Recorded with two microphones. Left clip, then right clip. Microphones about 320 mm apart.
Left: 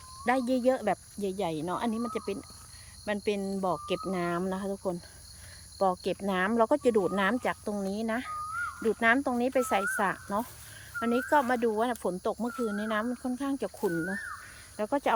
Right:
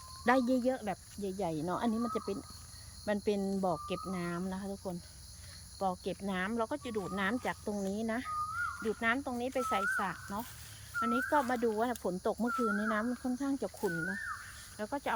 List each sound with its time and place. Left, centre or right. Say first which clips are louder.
0.3 s speech: left 3 dB; centre
13.8 s speech: left 5 dB; left
14.8 s speech: left 8 dB; centre